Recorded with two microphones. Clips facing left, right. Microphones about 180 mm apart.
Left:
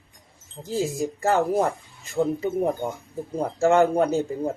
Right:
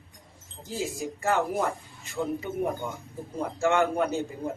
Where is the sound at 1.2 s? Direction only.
40° left (ahead or behind).